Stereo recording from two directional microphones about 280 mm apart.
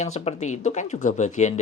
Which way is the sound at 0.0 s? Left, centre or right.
Left.